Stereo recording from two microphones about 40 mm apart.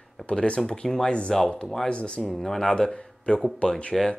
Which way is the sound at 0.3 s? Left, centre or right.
Left.